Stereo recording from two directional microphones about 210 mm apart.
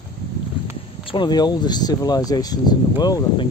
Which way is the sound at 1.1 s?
20° left (ahead or behind).